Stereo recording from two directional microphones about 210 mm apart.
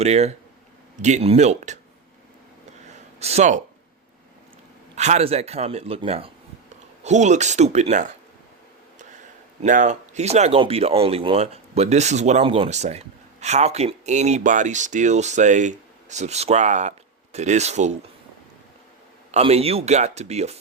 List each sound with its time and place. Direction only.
0.0 s speech: 30° right (ahead or behind)
2.9 s a sound: 30° right (ahead or behind)
4.9 s a man's voice: 30° right (ahead or behind)
9.6 s speech: 35° right (ahead or behind)
19.3 s speech: 30° right (ahead or behind)